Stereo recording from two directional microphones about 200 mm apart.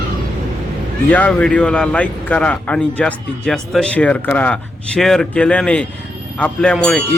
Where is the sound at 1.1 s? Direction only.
5° left (ahead or behind).